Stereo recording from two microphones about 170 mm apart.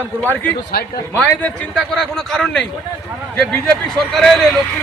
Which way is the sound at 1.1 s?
10° left (ahead or behind).